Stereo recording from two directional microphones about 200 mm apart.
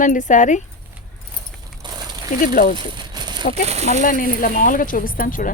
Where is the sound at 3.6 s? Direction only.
35° right (ahead or behind).